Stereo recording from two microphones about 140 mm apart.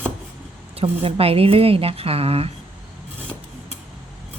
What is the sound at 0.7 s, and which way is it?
A woman's voice, 45° right (ahead or behind).